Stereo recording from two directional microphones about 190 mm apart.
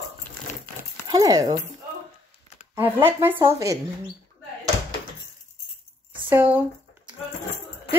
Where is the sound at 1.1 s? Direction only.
20° right (ahead or behind).